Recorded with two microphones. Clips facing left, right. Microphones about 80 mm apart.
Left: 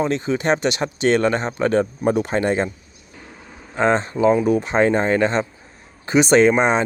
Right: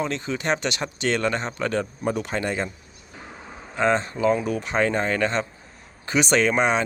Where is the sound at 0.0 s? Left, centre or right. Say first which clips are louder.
Left 6 dB; left.